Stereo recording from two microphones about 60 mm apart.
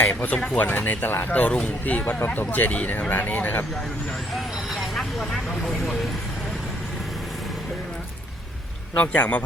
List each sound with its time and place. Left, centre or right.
0.0 s speech: left
4.4 s speech: centre
9.1 s speech: left